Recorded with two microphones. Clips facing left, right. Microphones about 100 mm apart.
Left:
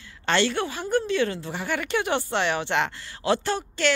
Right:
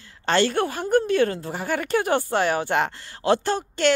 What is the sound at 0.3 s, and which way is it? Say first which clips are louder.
A woman's voice: right 3 dB; 40° right (ahead or behind).